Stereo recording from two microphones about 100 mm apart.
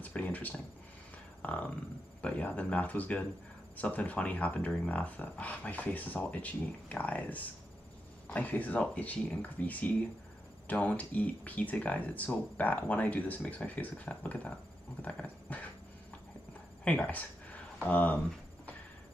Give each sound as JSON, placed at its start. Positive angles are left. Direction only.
{"t": 0.0, "sound": "speech", "side_deg": 15}
{"t": 16.8, "sound": "speech", "side_deg": 15}